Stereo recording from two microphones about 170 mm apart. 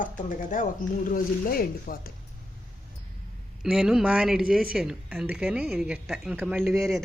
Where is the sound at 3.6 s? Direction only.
Centre (ahead or behind).